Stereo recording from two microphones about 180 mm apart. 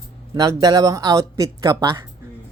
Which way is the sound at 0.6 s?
20° right (ahead or behind).